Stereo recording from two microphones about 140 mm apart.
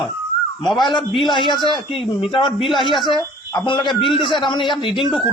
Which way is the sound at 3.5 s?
35° left (ahead or behind).